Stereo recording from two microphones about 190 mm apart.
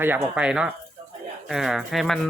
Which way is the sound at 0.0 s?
10° right (ahead or behind).